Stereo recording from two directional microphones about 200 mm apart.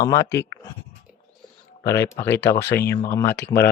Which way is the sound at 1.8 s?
15° left (ahead or behind).